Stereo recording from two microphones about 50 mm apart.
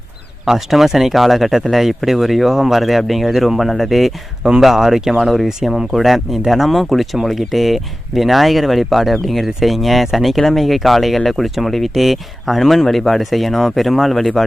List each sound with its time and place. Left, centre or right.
0.4 s speech: centre